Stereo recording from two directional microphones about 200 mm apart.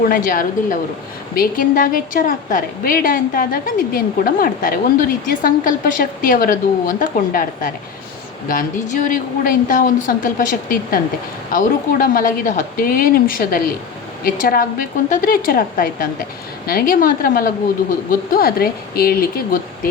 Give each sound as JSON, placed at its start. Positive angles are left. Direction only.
{"t": 0.1, "sound": "a woman's voice", "side_deg": 45}